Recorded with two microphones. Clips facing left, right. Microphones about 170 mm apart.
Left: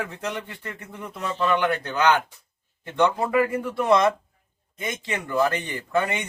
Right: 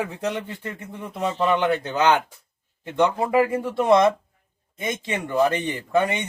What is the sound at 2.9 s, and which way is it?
A man's voice, 15° right (ahead or behind).